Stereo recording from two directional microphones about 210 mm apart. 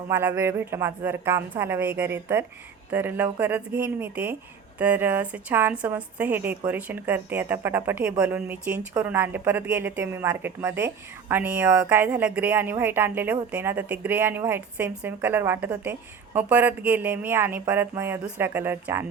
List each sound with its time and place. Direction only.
0.1 s a woman's voice: 10° right (ahead or behind)